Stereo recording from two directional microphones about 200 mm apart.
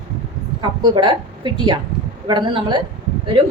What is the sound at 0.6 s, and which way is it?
Speech, 25° right (ahead or behind).